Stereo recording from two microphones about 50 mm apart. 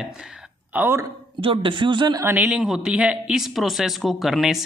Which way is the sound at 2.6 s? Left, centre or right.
Centre.